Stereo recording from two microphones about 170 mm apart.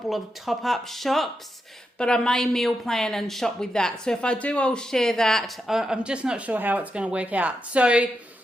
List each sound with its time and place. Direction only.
0.1 s a woman's voice: centre (ahead or behind)